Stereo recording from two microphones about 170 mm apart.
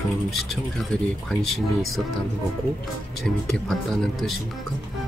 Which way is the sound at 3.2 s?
5° left (ahead or behind).